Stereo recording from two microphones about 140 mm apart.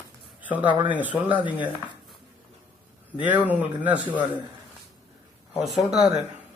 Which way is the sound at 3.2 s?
10° right (ahead or behind).